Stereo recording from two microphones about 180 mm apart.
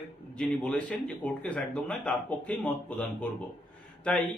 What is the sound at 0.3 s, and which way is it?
Speech, 5° left (ahead or behind).